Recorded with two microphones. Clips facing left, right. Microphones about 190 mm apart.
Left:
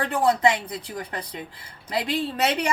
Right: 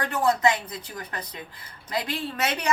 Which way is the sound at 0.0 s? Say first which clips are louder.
Left 2 dB; 30° left (ahead or behind).